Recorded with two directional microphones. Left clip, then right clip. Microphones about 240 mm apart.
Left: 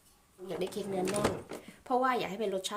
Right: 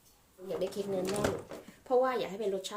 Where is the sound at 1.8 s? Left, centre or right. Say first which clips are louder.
Right 1 dB; left.